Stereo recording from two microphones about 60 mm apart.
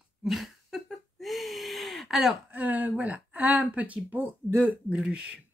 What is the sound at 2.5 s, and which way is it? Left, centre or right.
Speech, right.